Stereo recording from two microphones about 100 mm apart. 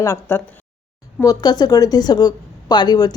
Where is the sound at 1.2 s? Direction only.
40° left (ahead or behind).